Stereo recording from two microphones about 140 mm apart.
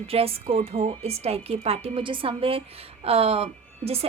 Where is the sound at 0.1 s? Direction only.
45° right (ahead or behind).